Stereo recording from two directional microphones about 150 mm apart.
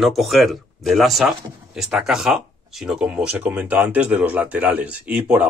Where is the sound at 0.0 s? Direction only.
Centre (ahead or behind).